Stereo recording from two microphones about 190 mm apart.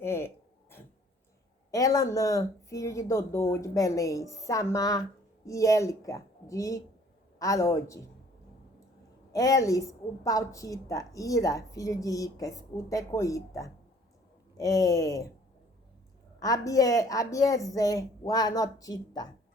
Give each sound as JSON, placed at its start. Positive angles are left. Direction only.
{"t": 0.0, "sound": "a sound", "side_deg": 15}
{"t": 1.7, "sound": "a woman's voice", "side_deg": 20}
{"t": 9.3, "sound": "a woman's voice", "side_deg": 15}
{"t": 16.4, "sound": "a woman's voice", "side_deg": 20}